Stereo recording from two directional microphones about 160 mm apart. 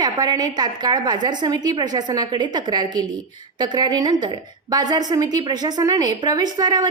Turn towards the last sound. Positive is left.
turn(degrees=-25)  # may be behind; listen again after turning